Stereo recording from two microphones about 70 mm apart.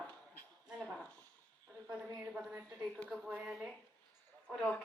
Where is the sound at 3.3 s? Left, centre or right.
Centre.